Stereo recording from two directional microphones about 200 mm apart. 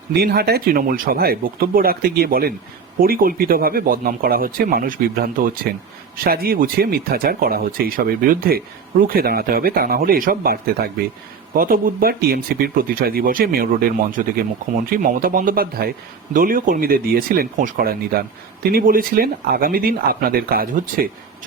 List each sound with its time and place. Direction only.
0.1 s speech: 50° right (ahead or behind)